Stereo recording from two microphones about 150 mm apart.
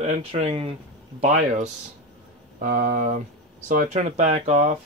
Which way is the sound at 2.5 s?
70° right (ahead or behind).